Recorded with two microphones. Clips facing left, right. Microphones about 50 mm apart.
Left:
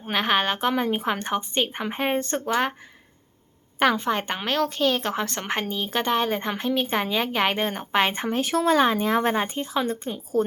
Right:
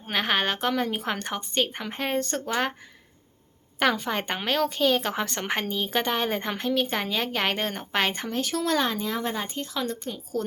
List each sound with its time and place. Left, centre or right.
0.0 s a woman's voice: centre
3.8 s speech: centre
8.3 s a woman's voice: left
9.0 s speech: left
9.6 s a woman's voice: left